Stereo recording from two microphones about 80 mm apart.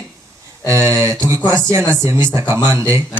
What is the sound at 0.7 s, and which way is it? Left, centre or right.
Speech, right.